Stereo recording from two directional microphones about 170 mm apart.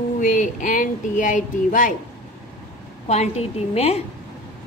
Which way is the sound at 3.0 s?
40° left (ahead or behind).